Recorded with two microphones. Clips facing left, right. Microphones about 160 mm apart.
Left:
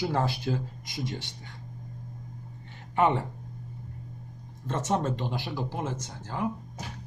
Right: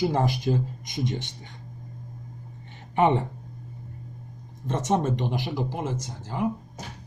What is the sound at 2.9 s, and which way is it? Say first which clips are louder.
Speech: right 3 dB; 20° right (ahead or behind).